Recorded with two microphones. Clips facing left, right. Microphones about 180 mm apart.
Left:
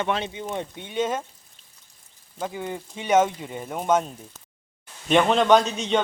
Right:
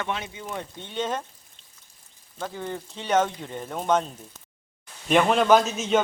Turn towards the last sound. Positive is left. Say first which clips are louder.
# even
turn(degrees=0)  # may be behind; listen again after turning